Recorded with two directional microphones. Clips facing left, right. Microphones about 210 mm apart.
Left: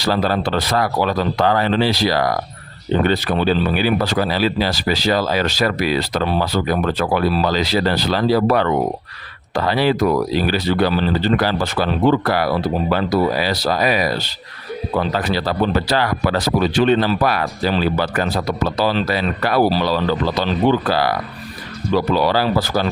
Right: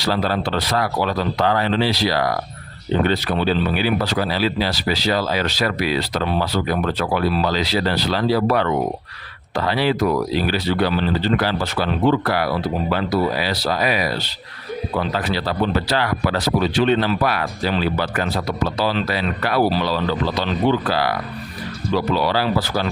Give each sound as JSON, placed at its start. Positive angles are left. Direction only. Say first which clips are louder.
{"t": 0.0, "sound": "speech", "louder": "left 2 dB", "side_deg": 45}